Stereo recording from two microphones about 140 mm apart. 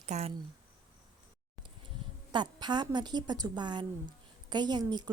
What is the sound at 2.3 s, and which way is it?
A woman's voice, 30° right (ahead or behind).